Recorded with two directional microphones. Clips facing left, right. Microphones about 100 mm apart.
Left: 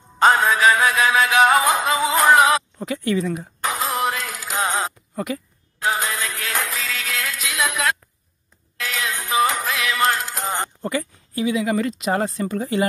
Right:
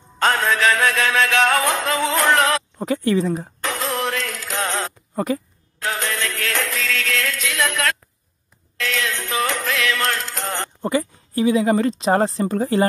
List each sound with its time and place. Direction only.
0.2 s music: 5° left (ahead or behind)
2.8 s speech: 35° right (ahead or behind)
3.6 s music: 5° left (ahead or behind)
5.1 s speech: 35° right (ahead or behind)
5.8 s music: 5° left (ahead or behind)
10.8 s speech: 25° right (ahead or behind)